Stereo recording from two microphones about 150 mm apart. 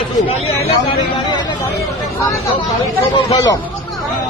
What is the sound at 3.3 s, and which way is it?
Speech, 25° left (ahead or behind).